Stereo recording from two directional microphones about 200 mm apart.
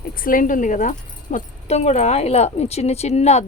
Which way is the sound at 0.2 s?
45° left (ahead or behind).